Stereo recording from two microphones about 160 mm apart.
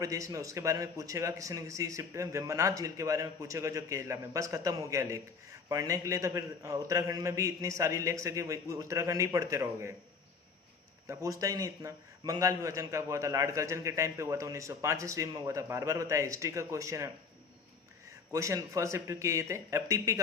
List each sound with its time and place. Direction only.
0.0 s speech: 20° right (ahead or behind)
11.1 s speech: 20° right (ahead or behind)
18.3 s speech: 20° right (ahead or behind)